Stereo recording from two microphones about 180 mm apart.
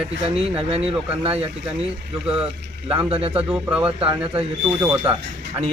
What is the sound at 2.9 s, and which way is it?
Speech, 30° right (ahead or behind).